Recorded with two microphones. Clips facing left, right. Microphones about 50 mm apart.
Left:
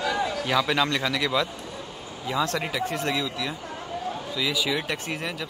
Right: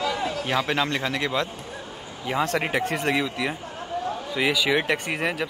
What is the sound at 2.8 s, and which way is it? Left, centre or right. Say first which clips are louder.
Speech: right 3 dB; right.